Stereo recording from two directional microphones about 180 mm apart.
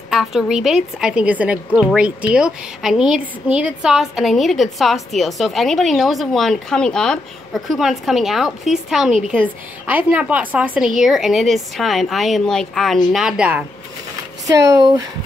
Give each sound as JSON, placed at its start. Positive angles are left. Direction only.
{"t": 0.1, "sound": "a woman's voice", "side_deg": 0}
{"t": 14.7, "sound": "speech", "side_deg": -20}